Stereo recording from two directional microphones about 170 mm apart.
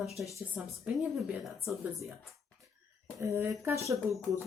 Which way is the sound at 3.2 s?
15° right (ahead or behind).